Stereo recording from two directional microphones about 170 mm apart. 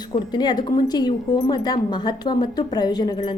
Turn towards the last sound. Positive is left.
turn(degrees=25)  # may be behind; listen again after turning